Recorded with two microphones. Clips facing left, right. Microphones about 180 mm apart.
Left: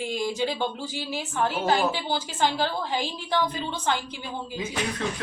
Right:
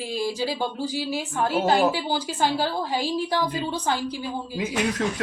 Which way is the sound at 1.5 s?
40° right (ahead or behind).